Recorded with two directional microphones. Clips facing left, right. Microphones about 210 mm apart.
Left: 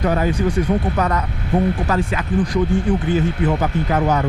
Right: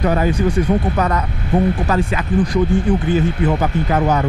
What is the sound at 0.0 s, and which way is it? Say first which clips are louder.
Speech: right 2 dB; 15° right (ahead or behind).